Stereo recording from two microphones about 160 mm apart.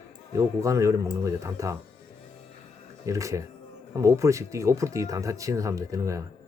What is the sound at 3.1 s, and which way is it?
Speech, 20° right (ahead or behind).